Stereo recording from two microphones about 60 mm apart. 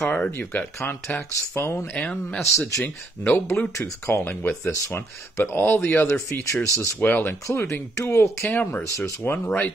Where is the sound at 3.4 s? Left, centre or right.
Left.